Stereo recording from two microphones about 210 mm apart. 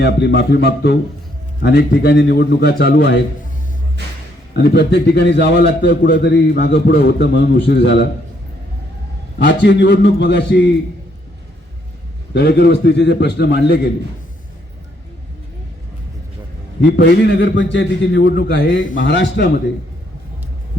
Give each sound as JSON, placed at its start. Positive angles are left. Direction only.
{"t": 0.0, "sound": "a man's voice", "side_deg": 50}
{"t": 4.5, "sound": "a man's voice", "side_deg": 50}
{"t": 9.6, "sound": "a man's voice", "side_deg": 55}
{"t": 12.3, "sound": "a man's voice", "side_deg": 55}
{"t": 17.0, "sound": "a man's voice", "side_deg": 55}
{"t": 18.9, "sound": "a man's voice", "side_deg": 60}